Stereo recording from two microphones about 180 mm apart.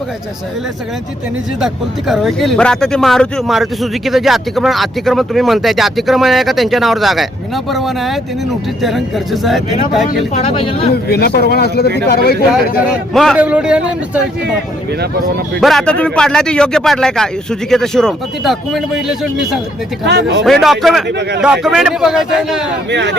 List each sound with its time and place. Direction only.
1.6 s speech: centre (ahead or behind)
10.3 s speech: 30° left (ahead or behind)
10.9 s speech: 60° left (ahead or behind)
13.1 s a man's voice: 5° right (ahead or behind)
15.6 s speech: 5° left (ahead or behind)
20.1 s speech: 70° right (ahead or behind)
20.4 s speech: centre (ahead or behind)
22.9 s speech: 75° right (ahead or behind)